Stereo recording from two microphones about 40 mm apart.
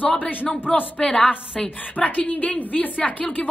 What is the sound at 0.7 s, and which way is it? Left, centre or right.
Speech, centre.